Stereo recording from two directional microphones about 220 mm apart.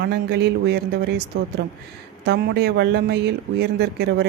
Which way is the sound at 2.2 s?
45° right (ahead or behind).